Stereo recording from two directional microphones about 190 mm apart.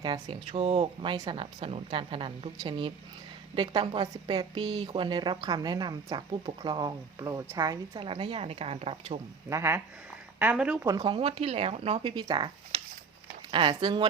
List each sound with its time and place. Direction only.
0.0 s a woman's voice: 25° right (ahead or behind)
9.5 s speech: 15° right (ahead or behind)
10.8 s a woman's voice: 25° right (ahead or behind)